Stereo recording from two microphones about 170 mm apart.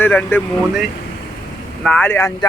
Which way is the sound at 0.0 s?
10° left (ahead or behind).